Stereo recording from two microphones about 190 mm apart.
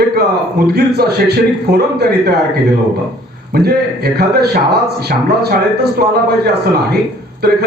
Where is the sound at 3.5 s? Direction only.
55° right (ahead or behind).